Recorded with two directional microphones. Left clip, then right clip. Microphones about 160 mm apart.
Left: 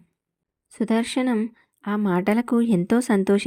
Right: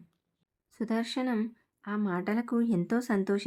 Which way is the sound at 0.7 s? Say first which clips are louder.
Left 9 dB; 45° left (ahead or behind).